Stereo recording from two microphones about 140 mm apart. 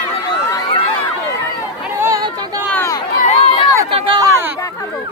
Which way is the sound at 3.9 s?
40° right (ahead or behind).